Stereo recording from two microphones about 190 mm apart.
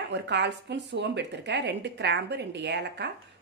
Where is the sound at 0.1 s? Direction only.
65° right (ahead or behind).